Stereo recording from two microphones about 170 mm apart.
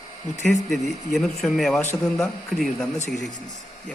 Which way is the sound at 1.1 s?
Centre (ahead or behind).